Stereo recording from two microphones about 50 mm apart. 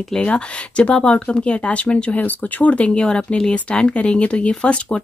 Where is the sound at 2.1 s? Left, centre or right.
Left.